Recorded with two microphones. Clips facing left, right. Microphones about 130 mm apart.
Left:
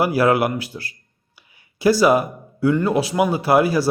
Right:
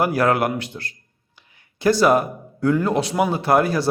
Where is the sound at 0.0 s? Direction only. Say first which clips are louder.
Left 2 dB; 5° left (ahead or behind).